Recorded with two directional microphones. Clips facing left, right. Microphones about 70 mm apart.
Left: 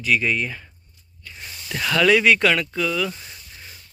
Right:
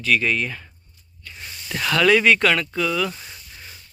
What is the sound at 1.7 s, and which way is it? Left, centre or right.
Speech, centre.